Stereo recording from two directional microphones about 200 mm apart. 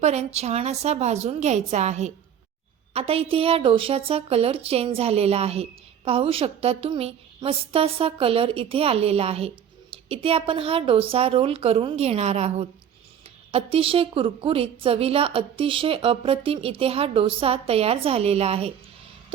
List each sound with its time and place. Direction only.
0.0 s a woman's voice: 35° right (ahead or behind)